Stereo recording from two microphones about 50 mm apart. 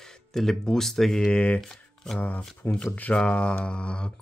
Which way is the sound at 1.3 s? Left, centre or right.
Left.